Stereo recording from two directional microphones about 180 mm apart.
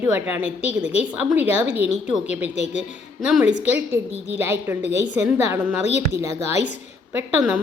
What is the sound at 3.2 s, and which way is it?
Speech, 5° right (ahead or behind).